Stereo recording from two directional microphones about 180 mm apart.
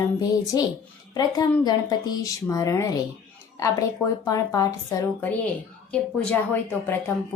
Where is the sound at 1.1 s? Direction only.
20° left (ahead or behind).